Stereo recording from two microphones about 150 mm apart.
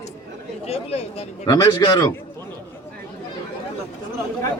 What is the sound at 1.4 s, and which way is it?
Speech, 25° left (ahead or behind).